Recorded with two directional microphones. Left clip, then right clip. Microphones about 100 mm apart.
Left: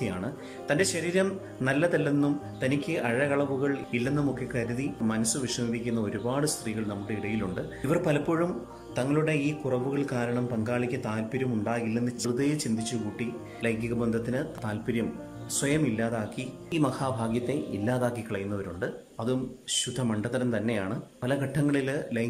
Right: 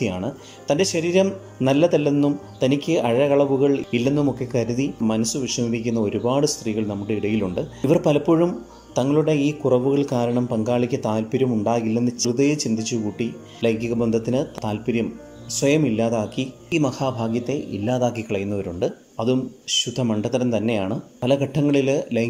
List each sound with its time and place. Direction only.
0.0 s speech: 25° right (ahead or behind)
6.6 s speech: 40° right (ahead or behind)
12.3 s speech: 30° right (ahead or behind)
16.7 s speech: 20° right (ahead or behind)
18.1 s speech: 30° right (ahead or behind)